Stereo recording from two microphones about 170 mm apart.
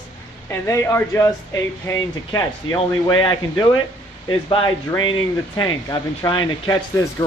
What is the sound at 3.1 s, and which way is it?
Speech, 25° left (ahead or behind).